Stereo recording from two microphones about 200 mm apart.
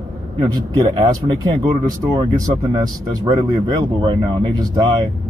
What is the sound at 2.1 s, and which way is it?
Speech, 20° right (ahead or behind).